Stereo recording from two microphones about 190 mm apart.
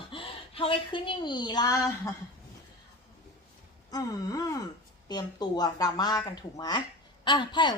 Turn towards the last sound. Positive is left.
turn(degrees=25)  # may be behind; listen again after turning